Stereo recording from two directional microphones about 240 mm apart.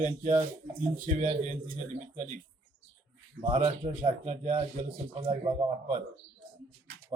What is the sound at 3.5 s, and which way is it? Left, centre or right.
A man's voice, right.